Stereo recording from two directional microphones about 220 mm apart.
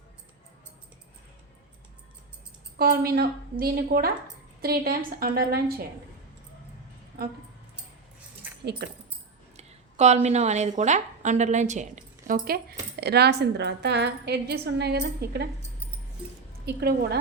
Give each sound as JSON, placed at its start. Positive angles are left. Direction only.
{"t": 2.7, "sound": "a woman's voice", "side_deg": -45}
{"t": 8.8, "sound": "a woman's voice", "side_deg": -50}
{"t": 9.6, "sound": "a woman's voice", "side_deg": -30}
{"t": 16.6, "sound": "a woman's voice", "side_deg": -45}